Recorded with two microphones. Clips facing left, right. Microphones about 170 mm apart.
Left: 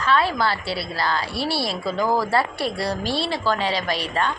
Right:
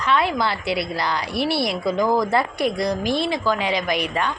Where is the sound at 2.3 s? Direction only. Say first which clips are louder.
Right 2 dB; 20° right (ahead or behind).